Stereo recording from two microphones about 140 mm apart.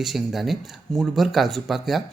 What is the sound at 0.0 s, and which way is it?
Speech, centre (ahead or behind).